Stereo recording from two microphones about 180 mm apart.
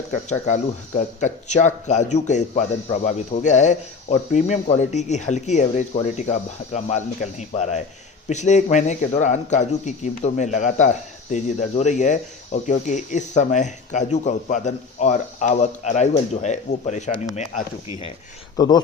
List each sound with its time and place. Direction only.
0.1 s speech: 40° left (ahead or behind)
18.5 s speech: 20° left (ahead or behind)